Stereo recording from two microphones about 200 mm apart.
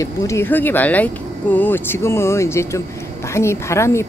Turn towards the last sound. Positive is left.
turn(degrees=15)  # may be behind; listen again after turning